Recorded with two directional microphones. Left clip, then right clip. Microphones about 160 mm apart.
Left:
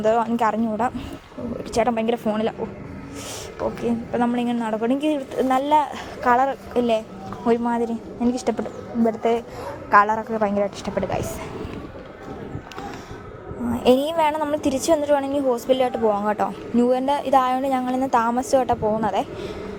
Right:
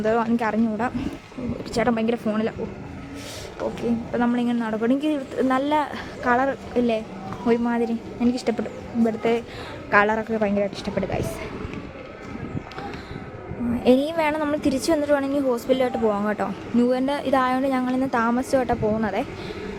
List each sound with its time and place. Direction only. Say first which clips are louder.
0.0 s a woman's voice: left 3 dB; 5° right (ahead or behind)
4.1 s a woman's voice: left 1 dB; 5° right (ahead or behind)
7.6 s a woman's voice: left 1 dB; 10° right (ahead or behind)
10.4 s a woman's voice: left 2 dB; 5° right (ahead or behind)
13.8 s a woman's voice: left 2 dB; centre (ahead or behind)